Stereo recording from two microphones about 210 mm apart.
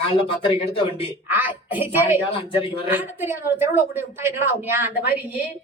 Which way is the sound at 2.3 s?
25° left (ahead or behind).